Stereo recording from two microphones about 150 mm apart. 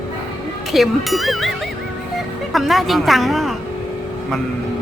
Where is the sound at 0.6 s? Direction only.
Centre (ahead or behind).